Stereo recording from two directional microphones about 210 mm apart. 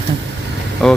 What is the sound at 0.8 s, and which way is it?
Speech, 5° left (ahead or behind).